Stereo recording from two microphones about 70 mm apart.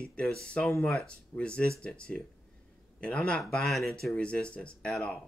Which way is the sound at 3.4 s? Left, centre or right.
Centre.